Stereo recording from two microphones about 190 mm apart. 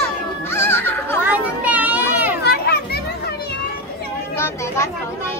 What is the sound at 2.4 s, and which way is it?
Children playing, 55° left (ahead or behind).